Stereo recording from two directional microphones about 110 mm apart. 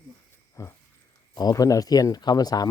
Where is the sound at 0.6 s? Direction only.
25° left (ahead or behind).